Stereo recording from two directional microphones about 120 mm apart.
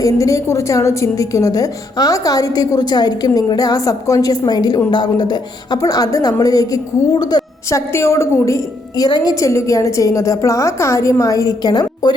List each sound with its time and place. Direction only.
0.0 s a woman's voice: 25° left (ahead or behind)
7.9 s a woman's voice: 20° left (ahead or behind)